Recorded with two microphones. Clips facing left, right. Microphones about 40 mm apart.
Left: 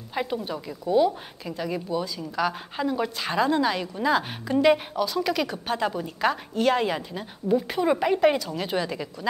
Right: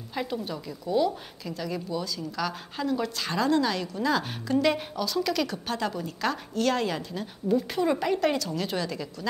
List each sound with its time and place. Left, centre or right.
0.1 s a woman's voice: centre